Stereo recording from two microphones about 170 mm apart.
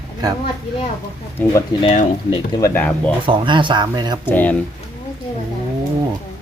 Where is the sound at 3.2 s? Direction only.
30° right (ahead or behind).